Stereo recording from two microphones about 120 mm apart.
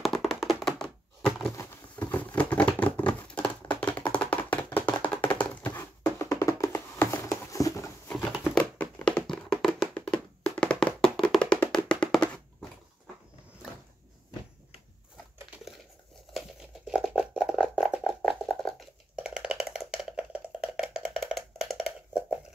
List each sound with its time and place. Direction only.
0.0 s tap: centre (ahead or behind)
0.6 s thunk: centre (ahead or behind)
2.0 s a sound: 15° left (ahead or behind)
4.7 s chopping: 15° left (ahead or behind)
5.2 s a sound: 10° left (ahead or behind)
5.8 s hands: 25° left (ahead or behind)
8.5 s tap: 10° left (ahead or behind)
9.3 s tap: centre (ahead or behind)
9.9 s tap: 10° left (ahead or behind)
11.3 s music: 10° left (ahead or behind)
16.3 s a sound: 5° right (ahead or behind)
18.5 s a sound: 5° left (ahead or behind)
19.1 s rattle: 5° right (ahead or behind)